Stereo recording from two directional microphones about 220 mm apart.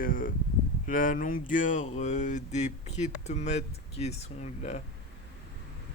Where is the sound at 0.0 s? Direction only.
40° left (ahead or behind).